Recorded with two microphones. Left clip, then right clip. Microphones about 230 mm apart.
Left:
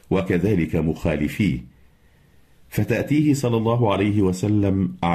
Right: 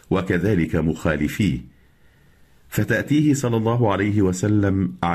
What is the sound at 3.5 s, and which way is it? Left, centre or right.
Speech, centre.